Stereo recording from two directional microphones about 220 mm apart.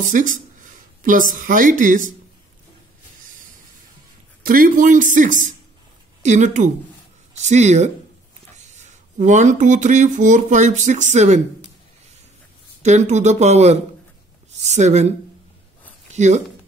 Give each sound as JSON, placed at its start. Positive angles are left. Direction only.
{"t": 0.0, "sound": "a sound", "side_deg": -35}
{"t": 1.4, "sound": "speech", "side_deg": -35}
{"t": 4.5, "sound": "speech", "side_deg": -35}
{"t": 12.8, "sound": "speech", "side_deg": -30}